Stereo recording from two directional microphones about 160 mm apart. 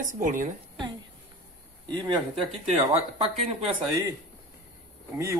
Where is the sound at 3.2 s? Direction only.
40° right (ahead or behind).